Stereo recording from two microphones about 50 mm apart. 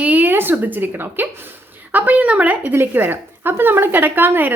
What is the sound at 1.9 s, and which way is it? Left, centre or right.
Speech, right.